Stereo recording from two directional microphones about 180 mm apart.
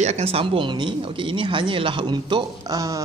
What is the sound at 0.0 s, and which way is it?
Speech, 35° right (ahead or behind).